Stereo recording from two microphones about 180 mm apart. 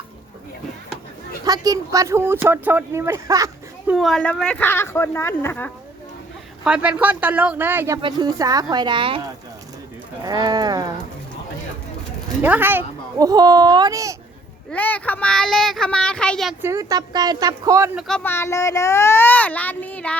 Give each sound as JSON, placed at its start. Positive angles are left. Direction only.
{"t": 1.5, "sound": "speech", "side_deg": -20}
{"t": 3.8, "sound": "a child's voice", "side_deg": 0}
{"t": 6.7, "sound": "speech", "side_deg": -5}
{"t": 8.0, "sound": "a child's voice", "side_deg": -20}
{"t": 12.4, "sound": "a child's voice", "side_deg": -10}
{"t": 14.7, "sound": "speech", "side_deg": 10}
{"t": 16.6, "sound": "a child's voice", "side_deg": -15}
{"t": 18.2, "sound": "a child's voice", "side_deg": 15}